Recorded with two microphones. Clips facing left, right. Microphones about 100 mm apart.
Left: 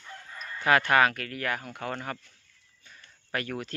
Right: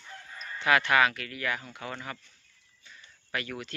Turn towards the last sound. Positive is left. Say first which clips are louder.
# left 3 dB
turn(degrees=40)  # may be behind; listen again after turning